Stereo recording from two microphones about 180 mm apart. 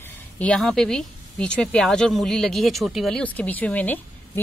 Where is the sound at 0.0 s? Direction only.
10° left (ahead or behind).